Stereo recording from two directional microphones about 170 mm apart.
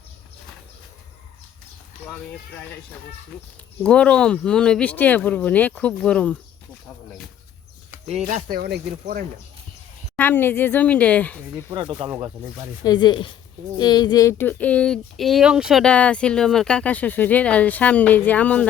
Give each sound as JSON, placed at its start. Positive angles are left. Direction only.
{"t": 3.3, "sound": "speech", "side_deg": 5}
{"t": 8.0, "sound": "speech", "side_deg": -40}
{"t": 8.4, "sound": "speech", "side_deg": -60}
{"t": 10.2, "sound": "speech", "side_deg": 10}
{"t": 11.7, "sound": "speech", "side_deg": -30}
{"t": 12.8, "sound": "speech", "side_deg": 25}